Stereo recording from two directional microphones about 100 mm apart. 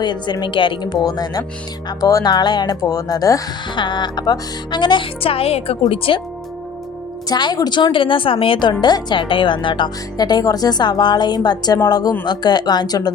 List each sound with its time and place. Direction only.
0.0 s a woman's voice: 50° left (ahead or behind)
3.8 s a woman's voice: 50° left (ahead or behind)
5.2 s speech: 75° left (ahead or behind)
5.9 s speech: 65° left (ahead or behind)
7.3 s a woman's voice: 45° left (ahead or behind)